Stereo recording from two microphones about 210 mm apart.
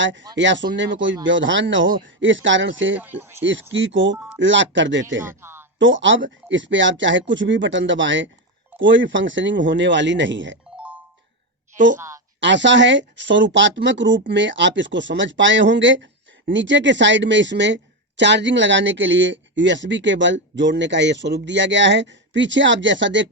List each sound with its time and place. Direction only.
0.0 s speech: 60° right (ahead or behind)
3.0 s speech: 10° right (ahead or behind)
3.4 s speech: 60° right (ahead or behind)
5.2 s a man's voice: 10° right (ahead or behind)
5.8 s speech: 65° right (ahead or behind)
11.9 s a woman's voice: 15° right (ahead or behind)
12.4 s speech: 60° right (ahead or behind)